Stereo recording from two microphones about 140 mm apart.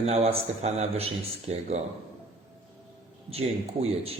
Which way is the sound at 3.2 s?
45° right (ahead or behind).